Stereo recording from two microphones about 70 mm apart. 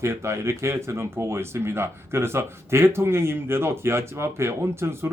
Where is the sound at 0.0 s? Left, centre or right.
Right.